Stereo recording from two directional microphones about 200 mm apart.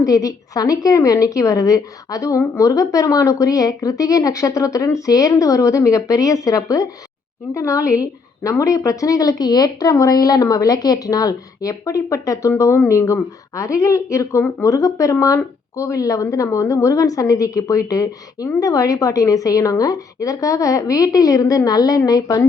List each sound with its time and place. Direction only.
0.0 s a woman's voice: 15° left (ahead or behind)